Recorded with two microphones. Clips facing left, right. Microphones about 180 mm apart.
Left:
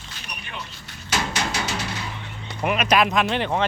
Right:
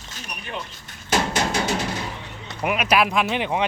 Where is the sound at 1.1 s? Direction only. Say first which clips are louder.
Right 4 dB; 50° right (ahead or behind).